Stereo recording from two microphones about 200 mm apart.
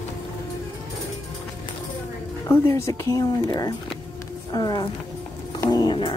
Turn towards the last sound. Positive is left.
turn(degrees=25)  # may be behind; listen again after turning